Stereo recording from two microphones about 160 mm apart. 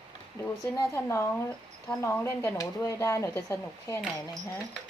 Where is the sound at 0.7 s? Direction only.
15° left (ahead or behind).